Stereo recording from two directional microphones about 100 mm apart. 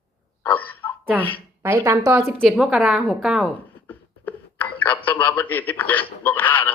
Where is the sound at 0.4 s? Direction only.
15° left (ahead or behind).